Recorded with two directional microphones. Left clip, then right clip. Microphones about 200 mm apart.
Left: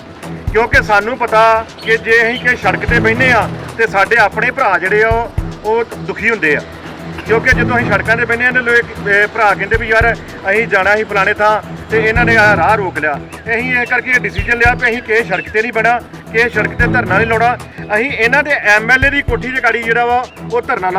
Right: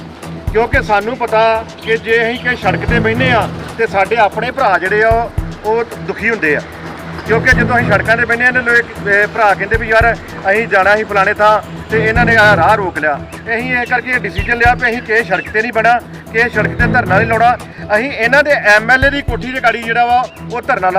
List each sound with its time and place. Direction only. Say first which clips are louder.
0.5 s speech: left 2 dB; 5° left (ahead or behind); by 21.0 s 20° right (ahead or behind)